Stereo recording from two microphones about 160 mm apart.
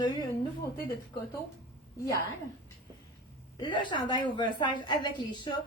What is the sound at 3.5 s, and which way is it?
A woman's voice, 30° left (ahead or behind).